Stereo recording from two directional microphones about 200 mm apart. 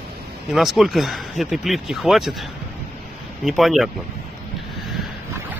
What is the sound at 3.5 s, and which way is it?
Speech, centre (ahead or behind).